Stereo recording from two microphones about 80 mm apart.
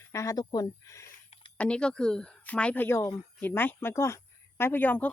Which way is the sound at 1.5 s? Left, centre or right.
Centre.